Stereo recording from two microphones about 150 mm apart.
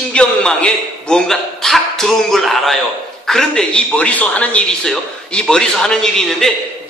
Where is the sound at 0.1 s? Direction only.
5° left (ahead or behind).